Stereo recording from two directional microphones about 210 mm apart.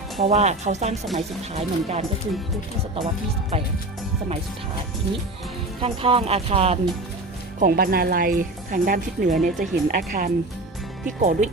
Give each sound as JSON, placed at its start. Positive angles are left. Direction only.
{"t": 0.2, "sound": "speech", "side_deg": -30}
{"t": 5.8, "sound": "speech", "side_deg": -25}
{"t": 7.6, "sound": "speech", "side_deg": -45}